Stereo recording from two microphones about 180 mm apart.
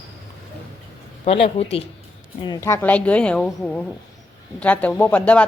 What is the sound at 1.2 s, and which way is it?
Speech, 35° left (ahead or behind).